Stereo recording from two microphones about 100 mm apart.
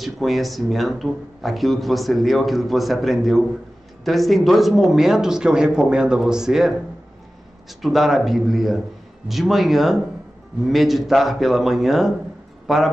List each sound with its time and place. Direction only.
0.0 s speech: centre (ahead or behind)
7.8 s a man's voice: centre (ahead or behind)